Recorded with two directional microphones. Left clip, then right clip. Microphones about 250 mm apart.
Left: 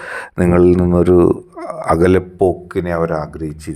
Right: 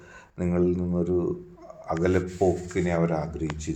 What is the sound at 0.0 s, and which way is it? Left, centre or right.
Speech, left.